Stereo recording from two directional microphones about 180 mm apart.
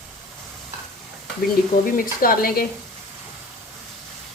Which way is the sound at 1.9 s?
50° left (ahead or behind).